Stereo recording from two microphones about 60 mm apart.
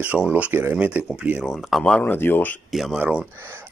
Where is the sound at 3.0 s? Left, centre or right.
Centre.